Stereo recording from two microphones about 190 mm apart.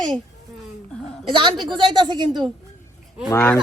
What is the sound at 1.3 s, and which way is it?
A woman's voice, 25° right (ahead or behind).